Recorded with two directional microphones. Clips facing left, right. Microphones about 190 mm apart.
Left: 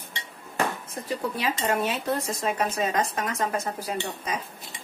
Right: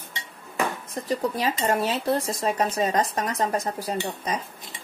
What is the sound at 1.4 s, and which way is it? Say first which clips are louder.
Speech: right 2 dB; 35° right (ahead or behind).